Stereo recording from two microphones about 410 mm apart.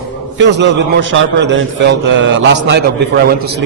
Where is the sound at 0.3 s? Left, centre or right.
Right.